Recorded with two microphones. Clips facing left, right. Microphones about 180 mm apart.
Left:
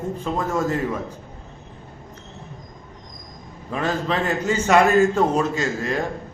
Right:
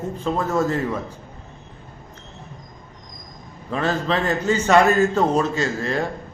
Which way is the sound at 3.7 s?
10° left (ahead or behind).